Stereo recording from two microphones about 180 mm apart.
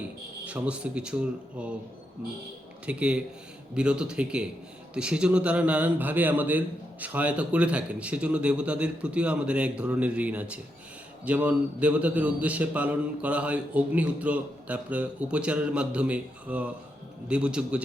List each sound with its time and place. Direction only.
0.4 s a man's voice: 5° right (ahead or behind)
2.8 s a man's voice: 5° right (ahead or behind)